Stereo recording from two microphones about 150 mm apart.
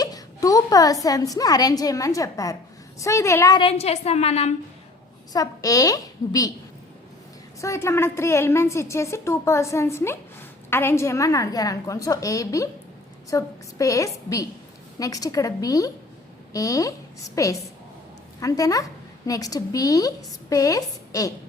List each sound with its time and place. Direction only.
0.0 s a woman's voice: 25° left (ahead or behind)
3.6 s a woman's voice: 40° left (ahead or behind)
5.3 s a woman's voice: 25° left (ahead or behind)
7.6 s a woman's voice: 20° left (ahead or behind)